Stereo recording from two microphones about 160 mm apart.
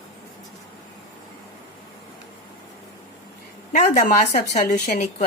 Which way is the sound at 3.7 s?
55° left (ahead or behind).